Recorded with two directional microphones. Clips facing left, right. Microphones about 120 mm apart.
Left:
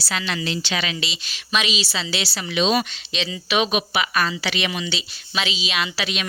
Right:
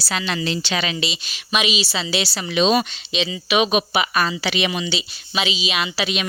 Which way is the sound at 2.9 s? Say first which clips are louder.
Right 4 dB; 10° right (ahead or behind).